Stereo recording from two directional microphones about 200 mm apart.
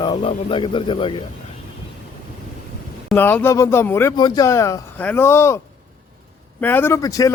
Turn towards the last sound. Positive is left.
turn(degrees=15)  # may be behind; listen again after turning